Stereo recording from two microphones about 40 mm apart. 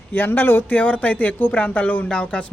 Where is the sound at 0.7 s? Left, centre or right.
Left.